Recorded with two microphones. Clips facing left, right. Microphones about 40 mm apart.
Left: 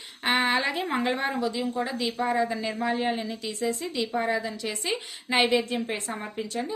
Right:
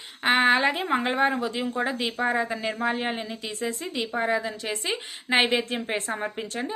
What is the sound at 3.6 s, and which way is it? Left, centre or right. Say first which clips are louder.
A woman's voice: left 1 dB; right.